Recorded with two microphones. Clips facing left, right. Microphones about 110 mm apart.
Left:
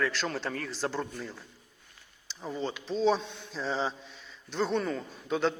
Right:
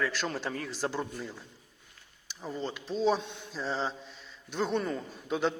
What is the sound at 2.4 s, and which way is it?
A man's voice, centre (ahead or behind).